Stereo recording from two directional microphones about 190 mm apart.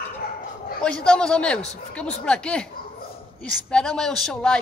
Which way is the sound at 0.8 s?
5° left (ahead or behind).